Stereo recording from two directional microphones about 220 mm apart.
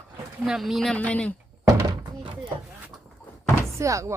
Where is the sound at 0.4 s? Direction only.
Centre (ahead or behind).